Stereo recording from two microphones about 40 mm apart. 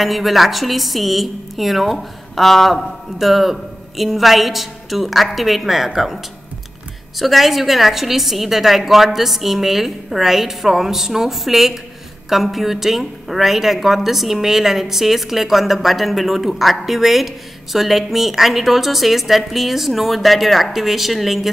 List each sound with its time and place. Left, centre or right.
0.0 s a woman's voice: centre
7.2 s a woman's voice: centre